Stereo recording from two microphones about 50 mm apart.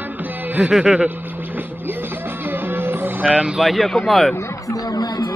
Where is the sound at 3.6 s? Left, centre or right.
Centre.